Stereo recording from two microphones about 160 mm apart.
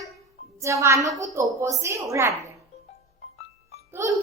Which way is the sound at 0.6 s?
20° right (ahead or behind).